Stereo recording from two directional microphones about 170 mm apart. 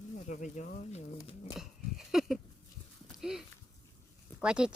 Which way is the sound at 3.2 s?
5° right (ahead or behind).